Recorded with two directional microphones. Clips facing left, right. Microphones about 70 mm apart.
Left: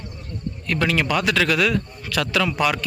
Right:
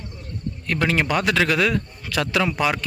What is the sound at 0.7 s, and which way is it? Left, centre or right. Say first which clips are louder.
A man's voice: even; right.